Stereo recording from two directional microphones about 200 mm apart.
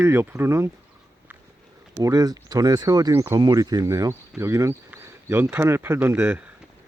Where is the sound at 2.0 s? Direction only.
20° right (ahead or behind).